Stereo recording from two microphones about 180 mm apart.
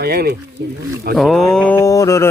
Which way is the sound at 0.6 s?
70° right (ahead or behind).